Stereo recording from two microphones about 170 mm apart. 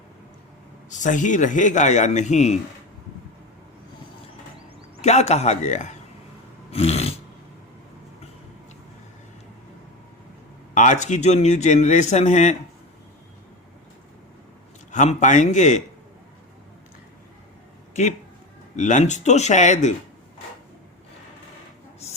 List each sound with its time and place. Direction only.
0.9 s speech: 45° left (ahead or behind)
5.0 s speech: 40° left (ahead or behind)
6.7 s dog: 35° left (ahead or behind)
10.8 s speech: 45° left (ahead or behind)
14.9 s speech: 45° left (ahead or behind)
18.8 s speech: 45° left (ahead or behind)